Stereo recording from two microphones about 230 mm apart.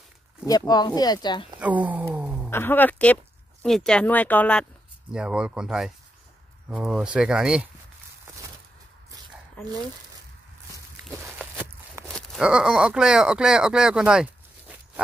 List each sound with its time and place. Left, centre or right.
0.5 s speech: centre
1.6 s a sound: centre
2.5 s speech: centre
11.1 s walk: centre
12.1 s speech: centre